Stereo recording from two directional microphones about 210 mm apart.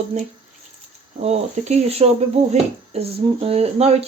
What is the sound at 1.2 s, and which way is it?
Speech, 30° right (ahead or behind).